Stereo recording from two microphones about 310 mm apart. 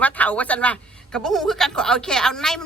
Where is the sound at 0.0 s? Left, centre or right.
Centre.